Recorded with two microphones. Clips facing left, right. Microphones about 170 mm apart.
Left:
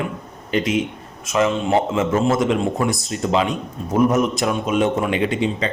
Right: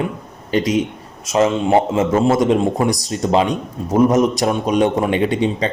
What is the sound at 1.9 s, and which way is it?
A man's voice, 35° right (ahead or behind).